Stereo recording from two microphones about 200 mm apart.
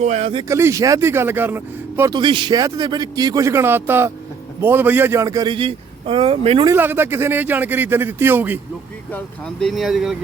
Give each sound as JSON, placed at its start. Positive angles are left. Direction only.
{"t": 0.0, "sound": "speech", "side_deg": -35}
{"t": 0.4, "sound": "a man's voice", "side_deg": -15}
{"t": 6.7, "sound": "speech", "side_deg": -10}
{"t": 9.1, "sound": "speech", "side_deg": 0}